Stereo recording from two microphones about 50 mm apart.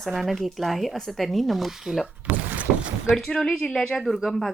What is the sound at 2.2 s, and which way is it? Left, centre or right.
Boat, right.